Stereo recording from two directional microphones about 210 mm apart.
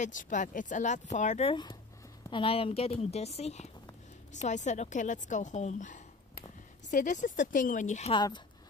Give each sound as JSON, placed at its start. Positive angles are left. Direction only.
{"t": 0.0, "sound": "a woman's voice", "side_deg": 35}